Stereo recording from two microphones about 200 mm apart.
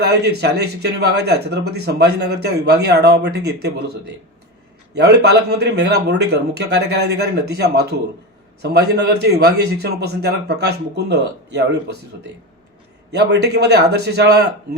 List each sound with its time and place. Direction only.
0.0 s speech: 55° right (ahead or behind)
4.9 s speech: 55° right (ahead or behind)
13.1 s speech: 60° right (ahead or behind)